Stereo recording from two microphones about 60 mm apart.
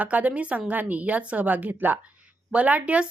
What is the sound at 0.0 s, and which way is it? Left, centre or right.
Speech, right.